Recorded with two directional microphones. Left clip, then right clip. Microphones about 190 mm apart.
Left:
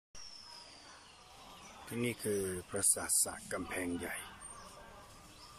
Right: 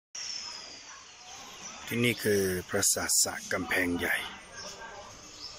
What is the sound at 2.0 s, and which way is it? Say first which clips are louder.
Speech: right 10 dB; centre (ahead or behind).